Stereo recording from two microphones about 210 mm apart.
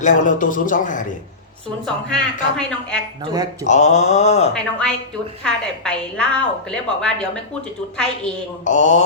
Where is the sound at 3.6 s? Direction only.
35° left (ahead or behind).